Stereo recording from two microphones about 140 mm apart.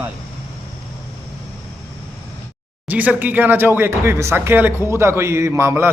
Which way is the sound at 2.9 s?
10° right (ahead or behind).